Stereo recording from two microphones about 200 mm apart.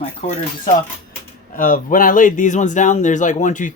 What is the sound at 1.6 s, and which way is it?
Speech, 45° left (ahead or behind).